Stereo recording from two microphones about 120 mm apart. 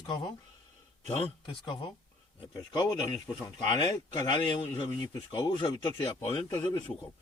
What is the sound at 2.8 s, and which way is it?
Speech, 30° left (ahead or behind).